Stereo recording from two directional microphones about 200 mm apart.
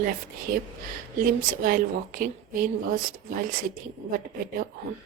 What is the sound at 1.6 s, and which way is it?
A woman's voice, 45° right (ahead or behind).